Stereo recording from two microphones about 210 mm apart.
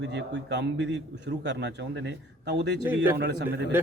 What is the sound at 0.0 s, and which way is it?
A man's voice, 55° right (ahead or behind).